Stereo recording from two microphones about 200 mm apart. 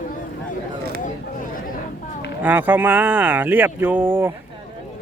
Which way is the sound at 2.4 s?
10° right (ahead or behind).